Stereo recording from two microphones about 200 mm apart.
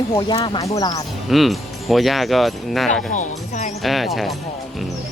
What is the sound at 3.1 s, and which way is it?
Speech, 40° left (ahead or behind).